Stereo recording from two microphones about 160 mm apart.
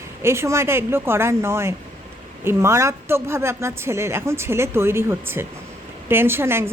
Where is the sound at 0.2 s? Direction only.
15° right (ahead or behind).